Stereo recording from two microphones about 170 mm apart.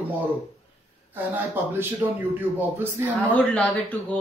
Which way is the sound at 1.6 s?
10° right (ahead or behind).